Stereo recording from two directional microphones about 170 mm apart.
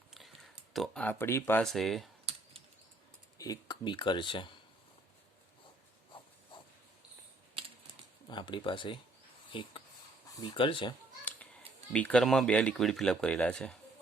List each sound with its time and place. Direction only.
0.7 s speech: centre (ahead or behind)
1.0 s speech: 15° left (ahead or behind)
1.6 s speech: centre (ahead or behind)
3.3 s speech: 20° left (ahead or behind)
8.3 s speech: 25° left (ahead or behind)
11.9 s speech: 5° left (ahead or behind)